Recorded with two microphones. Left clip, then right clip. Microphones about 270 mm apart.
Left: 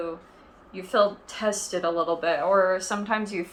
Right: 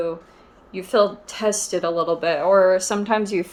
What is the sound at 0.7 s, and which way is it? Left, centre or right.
Speech, right.